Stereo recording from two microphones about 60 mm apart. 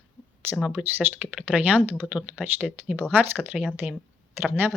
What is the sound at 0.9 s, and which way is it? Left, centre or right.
Speech, right.